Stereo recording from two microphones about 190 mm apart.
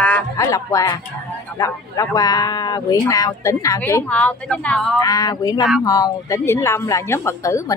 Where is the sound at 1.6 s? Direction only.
20° left (ahead or behind).